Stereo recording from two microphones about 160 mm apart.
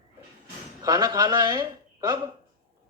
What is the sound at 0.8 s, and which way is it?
A man's voice, 25° right (ahead or behind).